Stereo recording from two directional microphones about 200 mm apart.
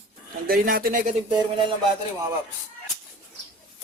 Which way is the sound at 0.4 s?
50° right (ahead or behind).